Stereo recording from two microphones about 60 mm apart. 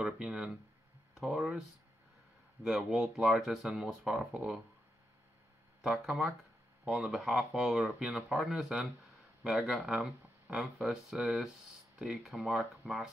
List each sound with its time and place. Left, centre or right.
0.0 s speech: centre
2.6 s speech: centre
4.3 s speech: centre
5.8 s speech: centre